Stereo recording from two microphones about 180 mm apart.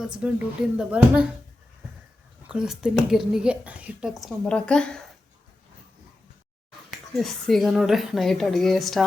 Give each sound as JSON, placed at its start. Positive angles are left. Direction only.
{"t": 0.0, "sound": "speech", "side_deg": -5}
{"t": 2.5, "sound": "speech", "side_deg": -5}
{"t": 7.2, "sound": "speech", "side_deg": 0}